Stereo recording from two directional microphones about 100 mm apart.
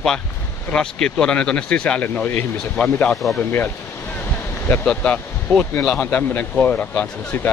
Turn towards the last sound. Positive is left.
turn(degrees=20)  # may be behind; listen again after turning